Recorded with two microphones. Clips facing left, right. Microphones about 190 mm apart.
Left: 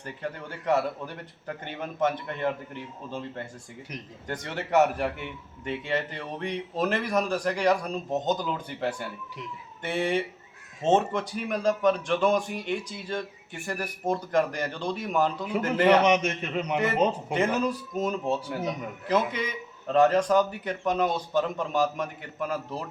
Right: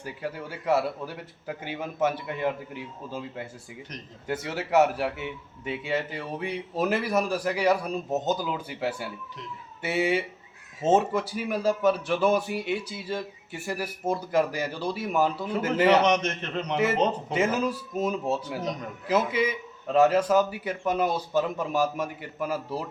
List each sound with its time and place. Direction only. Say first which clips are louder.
0.0 s a man's voice: right 1 dB; 5° right (ahead or behind)
16.0 s a man's voice: left 1 dB; 10° left (ahead or behind)
16.7 s a man's voice: right 1 dB; 5° right (ahead or behind)
18.6 s a man's voice: left 1 dB; 10° left (ahead or behind)
19.0 s a man's voice: right 2 dB; 5° right (ahead or behind)